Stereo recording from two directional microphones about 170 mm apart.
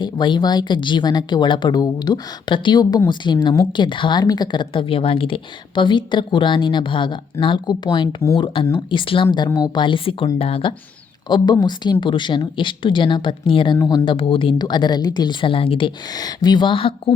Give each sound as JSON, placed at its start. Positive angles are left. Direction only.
{"t": 0.0, "sound": "speech", "side_deg": 25}